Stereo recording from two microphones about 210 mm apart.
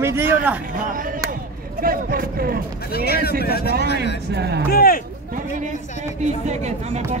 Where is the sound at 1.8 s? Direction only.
45° right (ahead or behind).